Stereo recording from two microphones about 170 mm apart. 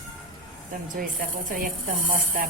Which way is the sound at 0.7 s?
55° right (ahead or behind).